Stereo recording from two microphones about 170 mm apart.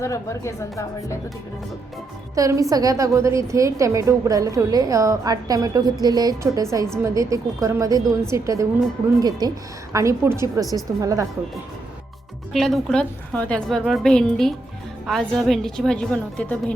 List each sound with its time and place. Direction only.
0.0 s speech: 15° left (ahead or behind)
2.3 s a woman's voice: 20° right (ahead or behind)
12.5 s a woman's voice: centre (ahead or behind)